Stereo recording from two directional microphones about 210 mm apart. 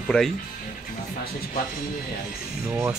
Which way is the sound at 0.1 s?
5° left (ahead or behind).